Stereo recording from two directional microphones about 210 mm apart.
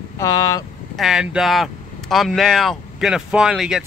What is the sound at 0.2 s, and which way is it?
Speech, 15° left (ahead or behind).